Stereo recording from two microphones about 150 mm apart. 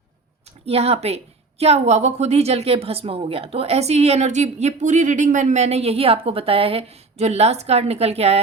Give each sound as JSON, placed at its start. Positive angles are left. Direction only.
{"t": 0.6, "sound": "a woman's voice", "side_deg": -40}